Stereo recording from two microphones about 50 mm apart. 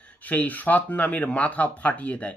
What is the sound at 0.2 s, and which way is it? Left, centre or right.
Speech, left.